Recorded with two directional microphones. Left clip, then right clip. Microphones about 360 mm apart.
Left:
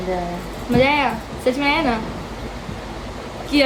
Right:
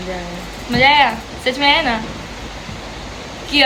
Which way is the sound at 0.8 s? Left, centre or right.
Centre.